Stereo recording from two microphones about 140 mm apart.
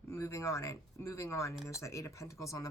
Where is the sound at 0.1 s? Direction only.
20° left (ahead or behind).